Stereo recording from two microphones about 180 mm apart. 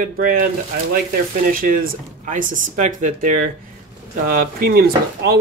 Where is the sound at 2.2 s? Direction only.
45° right (ahead or behind).